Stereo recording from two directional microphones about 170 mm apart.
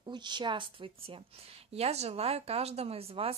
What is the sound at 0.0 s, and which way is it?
A woman's voice, 25° right (ahead or behind).